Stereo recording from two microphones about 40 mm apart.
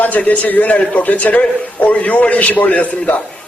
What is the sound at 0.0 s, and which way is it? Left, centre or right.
A man's voice, left.